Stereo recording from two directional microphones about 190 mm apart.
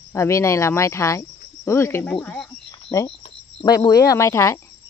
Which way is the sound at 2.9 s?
15° left (ahead or behind).